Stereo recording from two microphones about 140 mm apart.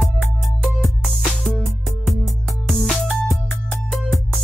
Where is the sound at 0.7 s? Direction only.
Centre (ahead or behind).